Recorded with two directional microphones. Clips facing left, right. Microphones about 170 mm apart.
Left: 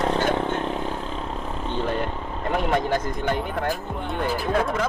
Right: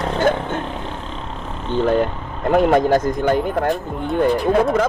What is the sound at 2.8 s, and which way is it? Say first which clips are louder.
Speech: right 8 dB; 40° right (ahead or behind).